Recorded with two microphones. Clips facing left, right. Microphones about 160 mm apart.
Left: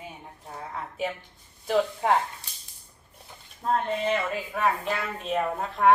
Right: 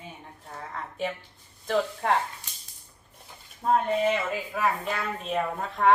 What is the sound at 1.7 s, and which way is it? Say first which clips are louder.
Speech: left 2 dB; 5° left (ahead or behind).